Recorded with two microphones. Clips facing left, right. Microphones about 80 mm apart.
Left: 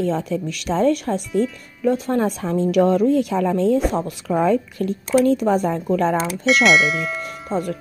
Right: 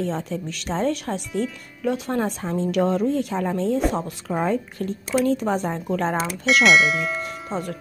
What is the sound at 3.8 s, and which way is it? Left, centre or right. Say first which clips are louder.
Speech: left 2 dB; centre.